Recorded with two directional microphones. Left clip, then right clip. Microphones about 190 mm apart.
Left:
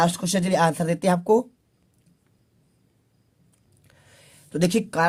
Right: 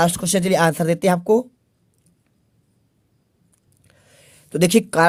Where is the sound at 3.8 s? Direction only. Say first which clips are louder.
Right 2 dB; 20° right (ahead or behind); by 5.0 s 45° right (ahead or behind).